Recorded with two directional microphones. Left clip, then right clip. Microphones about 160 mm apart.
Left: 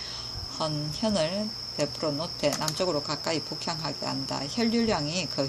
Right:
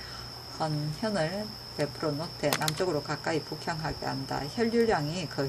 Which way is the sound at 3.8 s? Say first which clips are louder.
Left 2 dB; 15° left (ahead or behind).